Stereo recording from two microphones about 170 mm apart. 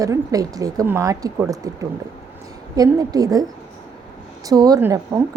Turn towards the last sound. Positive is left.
turn(degrees=-15)  # may be behind; listen again after turning